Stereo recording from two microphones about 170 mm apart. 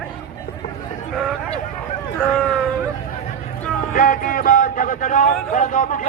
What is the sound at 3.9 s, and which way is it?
A man's voice, 50° left (ahead or behind).